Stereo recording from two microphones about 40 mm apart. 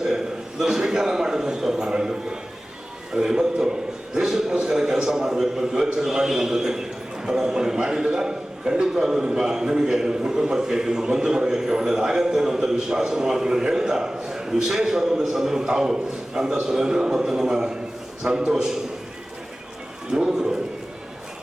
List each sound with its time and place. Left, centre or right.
0.6 s a man's voice: centre
20.1 s a man's voice: centre